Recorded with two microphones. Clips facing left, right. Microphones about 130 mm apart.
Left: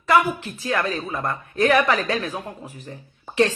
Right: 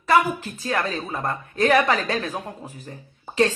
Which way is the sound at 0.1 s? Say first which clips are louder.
Even; 40° right (ahead or behind).